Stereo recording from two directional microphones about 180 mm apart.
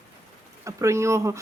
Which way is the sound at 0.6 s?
15° right (ahead or behind).